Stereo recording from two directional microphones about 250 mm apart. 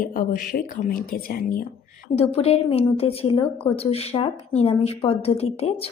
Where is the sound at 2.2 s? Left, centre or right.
Left.